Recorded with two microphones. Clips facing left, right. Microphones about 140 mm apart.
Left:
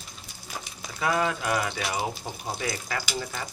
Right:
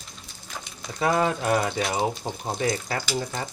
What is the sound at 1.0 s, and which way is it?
Speech, 35° right (ahead or behind).